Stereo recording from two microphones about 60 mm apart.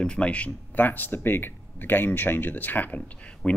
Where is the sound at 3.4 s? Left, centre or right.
Centre.